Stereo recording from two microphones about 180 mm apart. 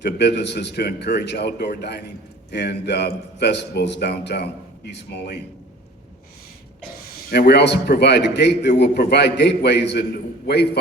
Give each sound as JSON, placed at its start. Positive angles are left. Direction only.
{"t": 0.0, "sound": "a man's voice", "side_deg": 70}
{"t": 7.3, "sound": "a man's voice", "side_deg": 65}